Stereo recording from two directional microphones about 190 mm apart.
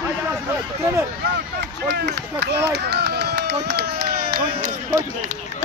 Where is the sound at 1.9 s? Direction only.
60° right (ahead or behind).